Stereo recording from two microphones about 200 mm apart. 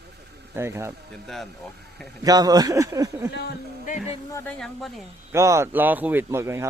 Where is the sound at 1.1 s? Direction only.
Centre (ahead or behind).